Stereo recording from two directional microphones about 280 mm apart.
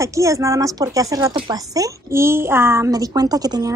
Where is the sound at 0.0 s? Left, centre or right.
Centre.